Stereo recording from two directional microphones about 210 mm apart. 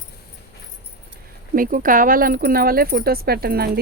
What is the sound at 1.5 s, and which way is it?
Speech, 40° right (ahead or behind).